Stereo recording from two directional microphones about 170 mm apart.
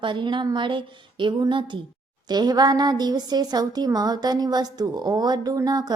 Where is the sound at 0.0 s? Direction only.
30° right (ahead or behind).